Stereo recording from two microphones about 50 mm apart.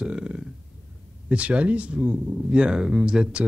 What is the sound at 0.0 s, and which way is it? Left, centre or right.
Burping, centre.